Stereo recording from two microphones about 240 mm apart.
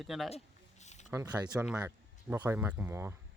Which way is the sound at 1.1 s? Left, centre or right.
Centre.